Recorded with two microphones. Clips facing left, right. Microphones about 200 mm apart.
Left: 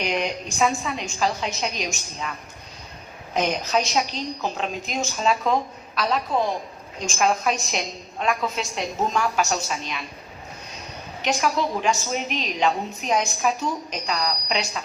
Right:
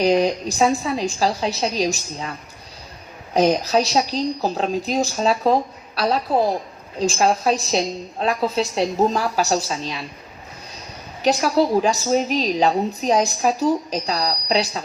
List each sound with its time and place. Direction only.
0.0 s a woman's voice: 35° right (ahead or behind)
3.3 s a woman's voice: 35° right (ahead or behind)
11.2 s a woman's voice: 35° right (ahead or behind)